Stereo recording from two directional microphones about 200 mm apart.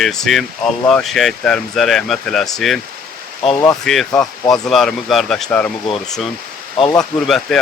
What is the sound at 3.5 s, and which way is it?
Speech, 15° left (ahead or behind).